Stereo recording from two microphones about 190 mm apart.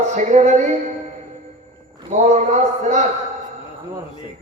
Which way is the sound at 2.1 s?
35° right (ahead or behind).